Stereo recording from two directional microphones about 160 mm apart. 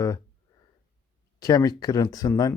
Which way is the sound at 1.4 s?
25° left (ahead or behind).